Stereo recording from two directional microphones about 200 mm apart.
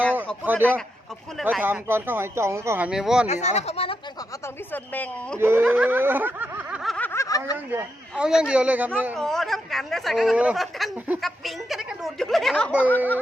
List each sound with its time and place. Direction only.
0.4 s speech: 10° right (ahead or behind)
3.2 s speech: 35° left (ahead or behind)
4.4 s speech: 10° left (ahead or behind)
5.4 s snicker: 10° right (ahead or behind); by 7.5 s 15° left (ahead or behind)
8.2 s speech: 5° right (ahead or behind)